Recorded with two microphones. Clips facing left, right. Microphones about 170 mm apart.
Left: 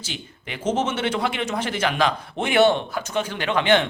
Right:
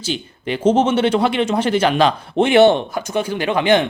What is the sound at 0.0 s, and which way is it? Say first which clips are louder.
Speech: right 11 dB; 30° right (ahead or behind).